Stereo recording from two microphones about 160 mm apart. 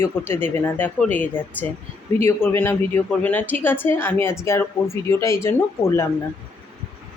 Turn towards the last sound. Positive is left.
turn(degrees=15)  # may be behind; listen again after turning